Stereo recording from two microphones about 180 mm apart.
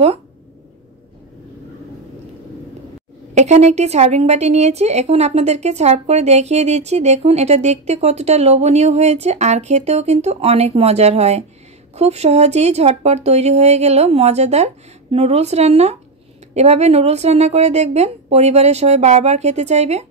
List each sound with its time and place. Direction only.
3.3 s a woman's voice: 40° right (ahead or behind)